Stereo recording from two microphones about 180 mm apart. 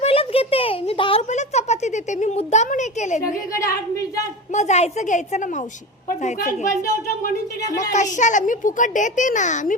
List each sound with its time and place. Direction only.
0.0 s a sound: 30° left (ahead or behind)
1.3 s speech: 40° left (ahead or behind)
4.5 s a woman's voice: 40° left (ahead or behind)
7.9 s a woman's voice: 45° left (ahead or behind)